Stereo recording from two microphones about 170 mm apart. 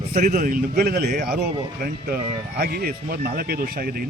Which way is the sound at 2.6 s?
60° right (ahead or behind).